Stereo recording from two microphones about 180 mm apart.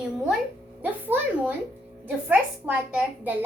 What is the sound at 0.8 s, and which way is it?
A child's voice, 10° right (ahead or behind).